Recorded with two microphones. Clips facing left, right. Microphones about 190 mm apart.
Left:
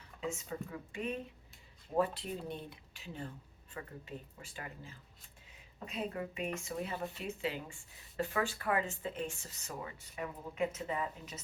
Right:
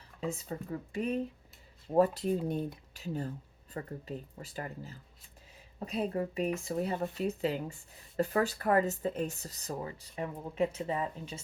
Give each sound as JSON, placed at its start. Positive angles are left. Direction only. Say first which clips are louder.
{"t": 0.2, "sound": "speech", "louder": "right 3 dB", "side_deg": -35}